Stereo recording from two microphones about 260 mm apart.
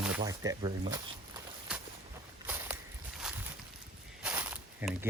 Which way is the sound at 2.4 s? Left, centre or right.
Centre.